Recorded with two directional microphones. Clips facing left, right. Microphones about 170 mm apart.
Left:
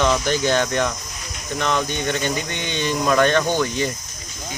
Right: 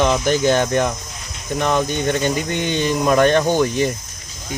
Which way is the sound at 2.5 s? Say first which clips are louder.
Right 6 dB; 45° right (ahead or behind).